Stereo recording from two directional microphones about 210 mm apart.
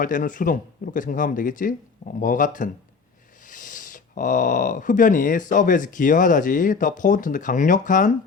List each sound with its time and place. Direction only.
0.0 s speech: 40° left (ahead or behind)